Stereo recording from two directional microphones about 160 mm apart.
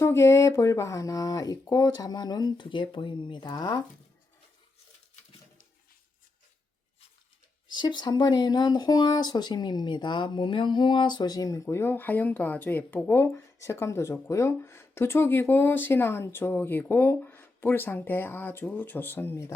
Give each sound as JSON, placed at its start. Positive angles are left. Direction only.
{"t": 0.0, "sound": "speech", "side_deg": 15}
{"t": 7.7, "sound": "speech", "side_deg": 30}